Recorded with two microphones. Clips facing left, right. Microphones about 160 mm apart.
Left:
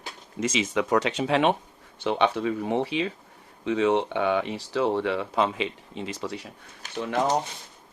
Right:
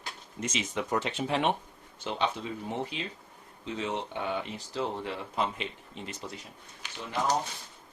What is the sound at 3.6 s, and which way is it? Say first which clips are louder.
Speech: left 11 dB; 75° left (ahead or behind).